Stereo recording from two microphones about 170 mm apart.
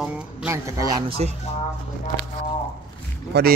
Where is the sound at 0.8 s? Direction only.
25° right (ahead or behind).